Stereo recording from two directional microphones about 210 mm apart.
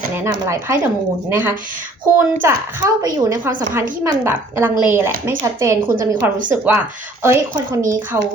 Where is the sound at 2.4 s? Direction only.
10° right (ahead or behind).